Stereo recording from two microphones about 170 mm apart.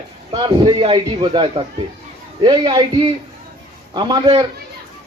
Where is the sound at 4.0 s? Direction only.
25° right (ahead or behind).